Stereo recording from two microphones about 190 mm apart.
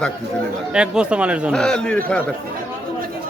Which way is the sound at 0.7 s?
5° right (ahead or behind).